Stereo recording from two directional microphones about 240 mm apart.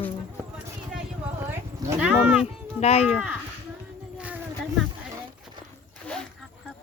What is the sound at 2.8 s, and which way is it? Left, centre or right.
Speech, left.